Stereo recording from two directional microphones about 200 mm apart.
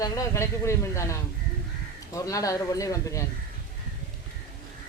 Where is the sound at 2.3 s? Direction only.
15° left (ahead or behind).